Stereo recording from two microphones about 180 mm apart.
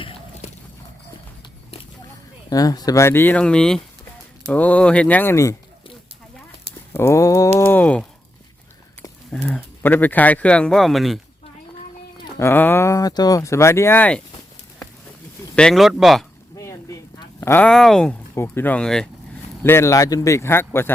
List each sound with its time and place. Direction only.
0.0 s a sound: 30° left (ahead or behind)
2.5 s speech: 20° left (ahead or behind)
6.9 s speech: 15° left (ahead or behind)
7.6 s a sound: 10° left (ahead or behind)
9.0 s speech: 5° left (ahead or behind)
12.4 s speech: 10° left (ahead or behind)
15.5 s speech: 5° left (ahead or behind)
16.6 s a sound: 15° left (ahead or behind)
18.3 s speech: 10° left (ahead or behind)
19.6 s speech: 15° left (ahead or behind)